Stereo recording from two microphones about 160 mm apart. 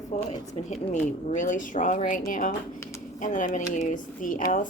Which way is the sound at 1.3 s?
55° left (ahead or behind).